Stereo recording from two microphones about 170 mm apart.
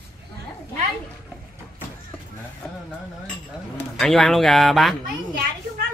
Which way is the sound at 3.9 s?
Centre (ahead or behind).